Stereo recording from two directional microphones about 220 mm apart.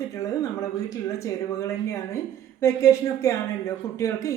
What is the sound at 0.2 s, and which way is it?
A woman's voice, 15° left (ahead or behind).